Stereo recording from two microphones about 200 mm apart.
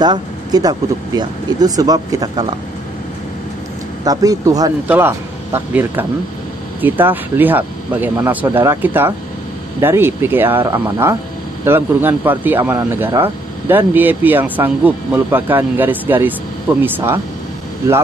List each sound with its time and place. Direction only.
0.0 s speech: 20° right (ahead or behind)
4.0 s speech: 20° right (ahead or behind)